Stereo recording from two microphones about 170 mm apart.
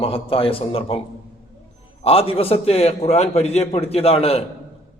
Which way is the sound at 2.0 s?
35° left (ahead or behind).